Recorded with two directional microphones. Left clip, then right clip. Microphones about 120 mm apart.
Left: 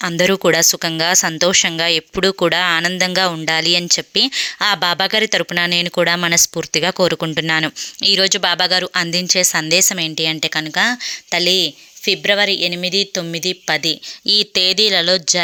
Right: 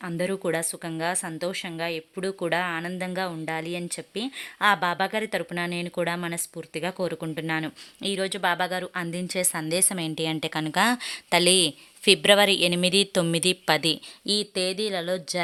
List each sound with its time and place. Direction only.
0.0 s speech: 40° left (ahead or behind)
2.8 s speech: 25° left (ahead or behind)
4.4 s speech: 20° left (ahead or behind)
5.4 s speech: 35° left (ahead or behind)
8.0 s speech: 25° left (ahead or behind); by 10.8 s 5° left (ahead or behind)
10.8 s speech: 10° right (ahead or behind)
14.3 s speech: 25° left (ahead or behind)